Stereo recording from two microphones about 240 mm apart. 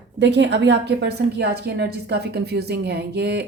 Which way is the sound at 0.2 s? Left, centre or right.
Right.